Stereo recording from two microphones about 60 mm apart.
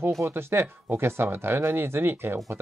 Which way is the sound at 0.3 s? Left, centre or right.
Right.